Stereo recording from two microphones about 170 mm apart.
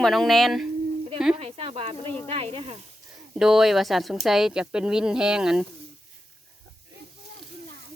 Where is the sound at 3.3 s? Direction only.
Centre (ahead or behind).